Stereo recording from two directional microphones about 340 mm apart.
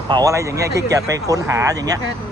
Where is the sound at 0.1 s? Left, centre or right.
Centre.